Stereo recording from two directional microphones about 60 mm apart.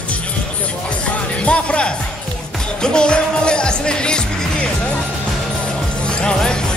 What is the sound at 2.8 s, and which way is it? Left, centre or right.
Music, centre.